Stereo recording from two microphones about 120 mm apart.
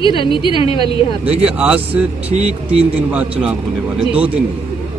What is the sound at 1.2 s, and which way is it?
Speech, 55° right (ahead or behind).